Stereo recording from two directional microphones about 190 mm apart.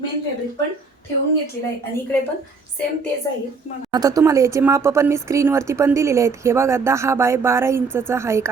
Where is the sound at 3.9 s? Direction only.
20° right (ahead or behind).